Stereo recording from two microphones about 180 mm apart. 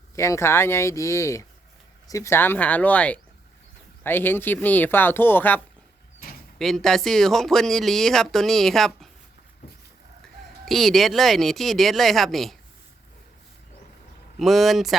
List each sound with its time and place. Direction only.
0.2 s speech: 15° left (ahead or behind)
6.6 s speech: centre (ahead or behind)
10.7 s speech: centre (ahead or behind)
14.3 s speech: centre (ahead or behind)